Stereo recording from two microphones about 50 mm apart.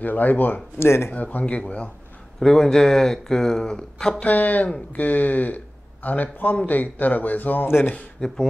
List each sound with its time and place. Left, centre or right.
0.0 s a man's voice: left
0.7 s speech: left
1.1 s speech: left
2.4 s speech: centre
4.2 s a man's voice: left
7.6 s speech: left
8.2 s speech: centre